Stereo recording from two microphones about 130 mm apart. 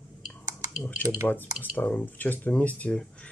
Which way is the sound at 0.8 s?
15° left (ahead or behind).